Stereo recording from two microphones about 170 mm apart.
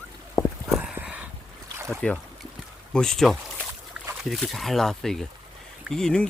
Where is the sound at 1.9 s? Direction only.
Centre (ahead or behind).